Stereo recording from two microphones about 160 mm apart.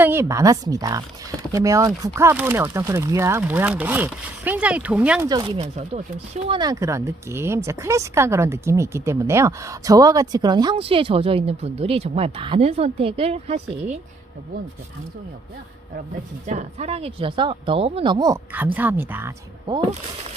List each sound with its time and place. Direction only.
0.0 s speech: 15° right (ahead or behind)
5.3 s speech: 25° right (ahead or behind)
5.5 s speech: 45° right (ahead or behind)
6.6 s speech: 20° right (ahead or behind); by 13.6 s 40° right (ahead or behind)
16.5 s a woman's voice: 45° right (ahead or behind); by 18.3 s 25° right (ahead or behind)
18.5 s speech: 10° right (ahead or behind)